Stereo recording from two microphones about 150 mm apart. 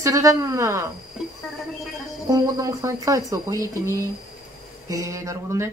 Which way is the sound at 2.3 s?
25° right (ahead or behind).